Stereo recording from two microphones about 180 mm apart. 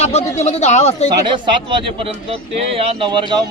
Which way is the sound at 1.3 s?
25° right (ahead or behind).